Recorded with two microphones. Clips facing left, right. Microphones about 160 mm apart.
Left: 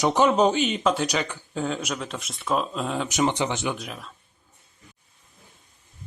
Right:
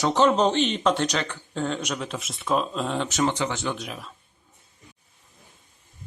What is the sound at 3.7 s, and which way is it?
Speech, centre (ahead or behind).